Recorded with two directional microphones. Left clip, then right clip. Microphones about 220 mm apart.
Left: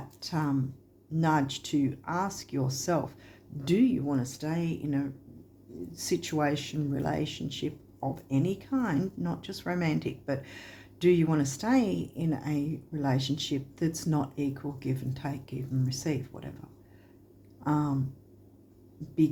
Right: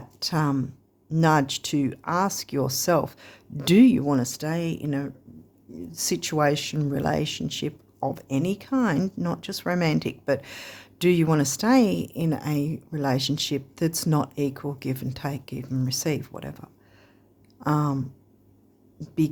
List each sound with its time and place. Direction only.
0.2 s speech: 45° right (ahead or behind)
17.6 s a sound: 45° right (ahead or behind)
18.9 s a woman's voice: 45° right (ahead or behind)